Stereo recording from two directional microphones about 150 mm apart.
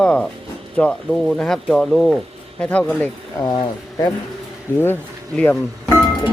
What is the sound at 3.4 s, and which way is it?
Speech, 25° left (ahead or behind).